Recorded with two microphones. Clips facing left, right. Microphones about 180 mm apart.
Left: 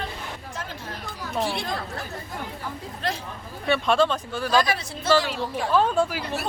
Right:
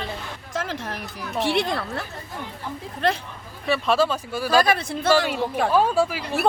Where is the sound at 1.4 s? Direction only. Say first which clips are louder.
Right 6 dB; 70° right (ahead or behind).